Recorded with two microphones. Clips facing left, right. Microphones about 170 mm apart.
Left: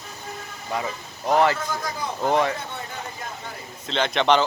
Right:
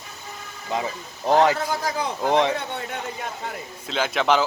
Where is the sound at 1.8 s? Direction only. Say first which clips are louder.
Right 4 dB; 85° right.